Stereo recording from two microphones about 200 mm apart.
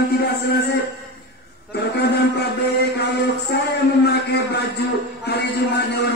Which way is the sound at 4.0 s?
55° left (ahead or behind).